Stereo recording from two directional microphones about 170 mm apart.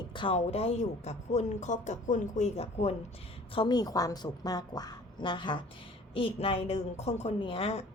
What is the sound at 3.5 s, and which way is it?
A woman's voice, 25° left (ahead or behind).